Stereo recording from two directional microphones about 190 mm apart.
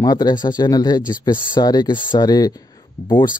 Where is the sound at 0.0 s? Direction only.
20° left (ahead or behind).